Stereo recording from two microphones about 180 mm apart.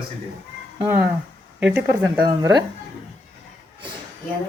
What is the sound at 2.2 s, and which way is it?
Speech, 25° right (ahead or behind).